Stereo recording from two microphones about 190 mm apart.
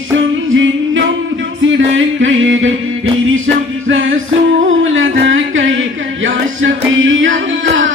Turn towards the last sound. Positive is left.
turn(degrees=-90)